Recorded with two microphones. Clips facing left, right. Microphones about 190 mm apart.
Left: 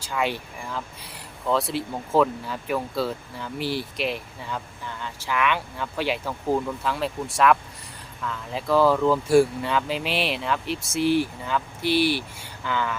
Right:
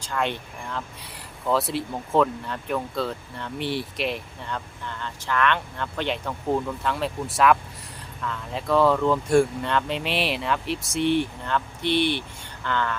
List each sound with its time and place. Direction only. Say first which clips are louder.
0.0 s speech: left 1 dB; 5° left (ahead or behind)